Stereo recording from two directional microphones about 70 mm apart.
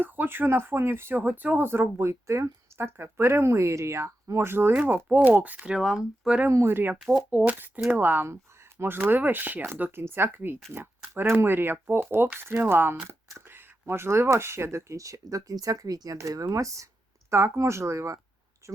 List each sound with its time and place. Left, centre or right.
0.0 s speech: right
5.7 s speech: centre
6.5 s speech: right
6.9 s speech: centre
7.3 s speech: right